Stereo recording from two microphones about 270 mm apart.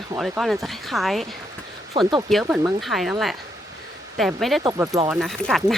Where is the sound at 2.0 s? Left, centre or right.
Centre.